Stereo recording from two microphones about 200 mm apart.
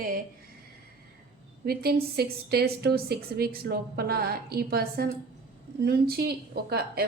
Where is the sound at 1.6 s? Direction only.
50° right (ahead or behind).